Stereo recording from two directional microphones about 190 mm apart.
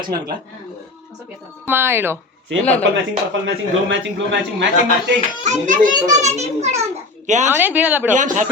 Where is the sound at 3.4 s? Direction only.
75° right (ahead or behind).